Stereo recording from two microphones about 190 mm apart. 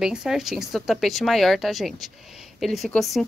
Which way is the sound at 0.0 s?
5° right (ahead or behind).